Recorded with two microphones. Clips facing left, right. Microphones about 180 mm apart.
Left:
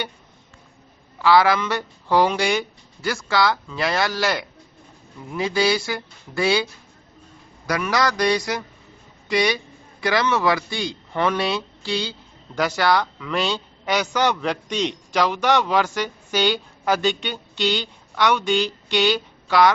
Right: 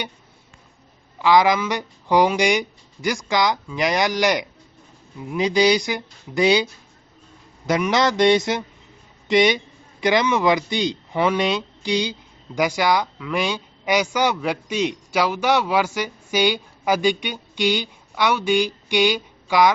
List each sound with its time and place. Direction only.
1.2 s a man's voice: 15° right (ahead or behind)
7.7 s a man's voice: 20° right (ahead or behind)